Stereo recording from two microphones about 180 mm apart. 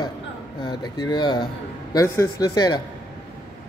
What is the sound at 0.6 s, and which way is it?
Speech, 25° left (ahead or behind).